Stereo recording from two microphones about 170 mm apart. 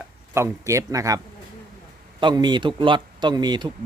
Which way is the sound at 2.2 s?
25° right (ahead or behind).